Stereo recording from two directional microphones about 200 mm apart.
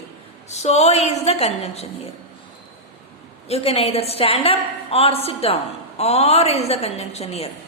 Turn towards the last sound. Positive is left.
turn(degrees=30)  # may be behind; listen again after turning